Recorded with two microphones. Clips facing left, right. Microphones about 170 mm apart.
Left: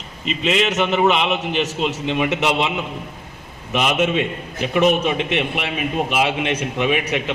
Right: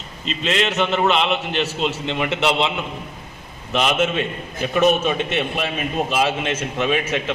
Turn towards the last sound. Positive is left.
turn(degrees=15)  # may be behind; listen again after turning